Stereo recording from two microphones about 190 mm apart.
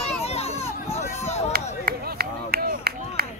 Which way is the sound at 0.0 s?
35° left (ahead or behind).